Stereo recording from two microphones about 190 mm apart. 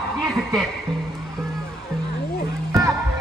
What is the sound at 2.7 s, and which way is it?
Music, 15° right (ahead or behind).